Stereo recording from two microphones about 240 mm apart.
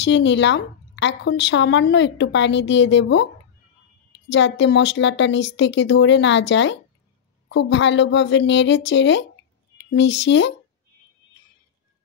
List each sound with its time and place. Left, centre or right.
0.0 s speech: left
4.3 s speech: left